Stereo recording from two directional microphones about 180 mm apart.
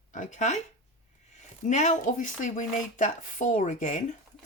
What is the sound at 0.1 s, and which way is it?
Speech, 45° left (ahead or behind).